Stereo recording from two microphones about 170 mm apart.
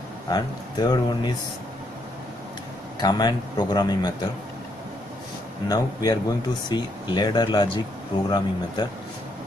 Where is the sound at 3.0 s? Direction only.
25° left (ahead or behind).